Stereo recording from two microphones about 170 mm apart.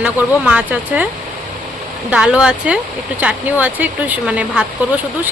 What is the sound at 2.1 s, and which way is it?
Speech, 5° right (ahead or behind).